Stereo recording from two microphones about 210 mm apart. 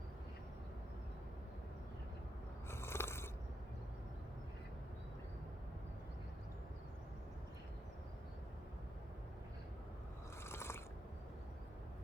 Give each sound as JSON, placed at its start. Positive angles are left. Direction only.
{"t": 2.6, "sound": "biting", "side_deg": 10}
{"t": 10.4, "sound": "mechanisms", "side_deg": 10}